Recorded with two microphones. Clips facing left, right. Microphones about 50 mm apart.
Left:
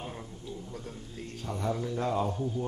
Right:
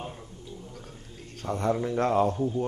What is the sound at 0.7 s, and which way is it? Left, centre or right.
Music, left.